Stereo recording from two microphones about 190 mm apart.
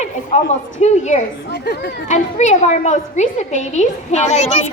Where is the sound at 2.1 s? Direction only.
40° left (ahead or behind).